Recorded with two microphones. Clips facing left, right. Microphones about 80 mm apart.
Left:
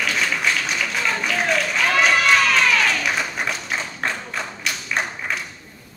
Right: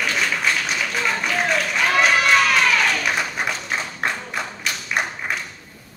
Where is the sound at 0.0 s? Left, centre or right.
Centre.